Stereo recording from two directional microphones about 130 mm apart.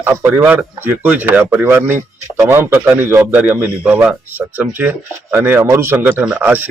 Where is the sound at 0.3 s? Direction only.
15° right (ahead or behind).